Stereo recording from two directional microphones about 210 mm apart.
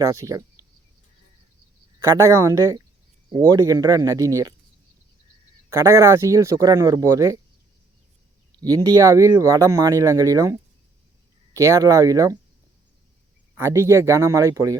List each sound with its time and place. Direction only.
0.0 s speech: 15° right (ahead or behind)
2.0 s speech: 15° right (ahead or behind)
5.7 s speech: 15° right (ahead or behind)
8.6 s speech: 15° right (ahead or behind)
13.6 s speech: 10° right (ahead or behind)